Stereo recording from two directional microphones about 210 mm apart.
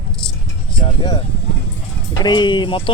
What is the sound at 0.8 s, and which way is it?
Speech, 25° left (ahead or behind).